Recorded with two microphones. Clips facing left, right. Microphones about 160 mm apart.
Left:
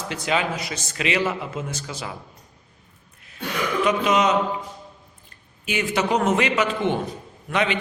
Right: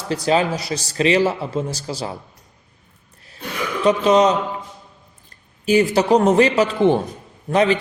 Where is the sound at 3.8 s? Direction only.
35° right (ahead or behind).